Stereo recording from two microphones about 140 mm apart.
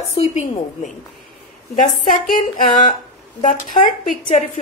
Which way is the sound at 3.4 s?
65° left (ahead or behind).